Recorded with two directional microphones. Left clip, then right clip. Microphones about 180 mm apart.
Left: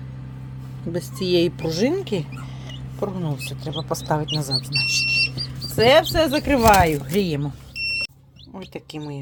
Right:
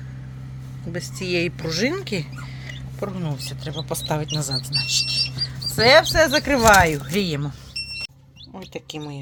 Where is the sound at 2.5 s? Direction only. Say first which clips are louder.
Right 1 dB; 20° right (ahead or behind).